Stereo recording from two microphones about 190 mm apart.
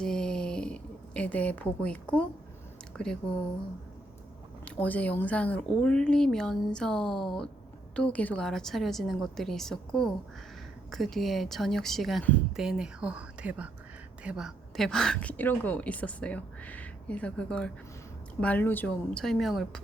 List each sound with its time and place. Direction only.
0.0 s a sound: 5° left (ahead or behind)
3.0 s speech: 5° left (ahead or behind)
4.6 s a woman's voice: 5° left (ahead or behind)